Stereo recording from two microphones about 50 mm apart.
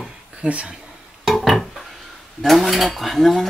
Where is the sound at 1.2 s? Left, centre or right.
Centre.